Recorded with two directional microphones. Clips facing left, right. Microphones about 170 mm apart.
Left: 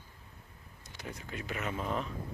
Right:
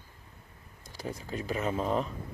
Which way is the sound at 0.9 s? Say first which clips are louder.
Right 6 dB; 35° right (ahead or behind).